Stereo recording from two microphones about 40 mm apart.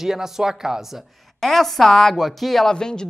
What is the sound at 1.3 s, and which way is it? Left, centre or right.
A man's voice, centre.